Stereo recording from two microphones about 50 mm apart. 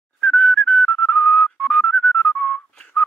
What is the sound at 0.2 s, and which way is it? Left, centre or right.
Whistling, centre.